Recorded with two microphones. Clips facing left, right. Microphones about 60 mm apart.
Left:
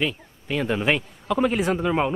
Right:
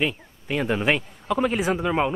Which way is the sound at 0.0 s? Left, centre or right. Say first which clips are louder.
Right 1 dB; centre.